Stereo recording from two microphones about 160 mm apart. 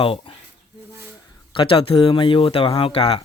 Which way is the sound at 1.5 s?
30° left (ahead or behind).